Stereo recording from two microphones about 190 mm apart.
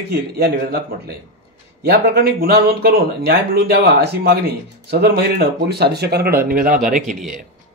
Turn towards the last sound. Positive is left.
turn(degrees=-40)  # may be behind; listen again after turning